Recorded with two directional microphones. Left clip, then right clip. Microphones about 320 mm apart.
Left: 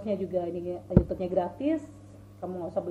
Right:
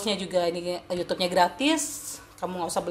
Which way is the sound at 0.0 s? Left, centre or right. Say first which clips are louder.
Right 5 dB; right.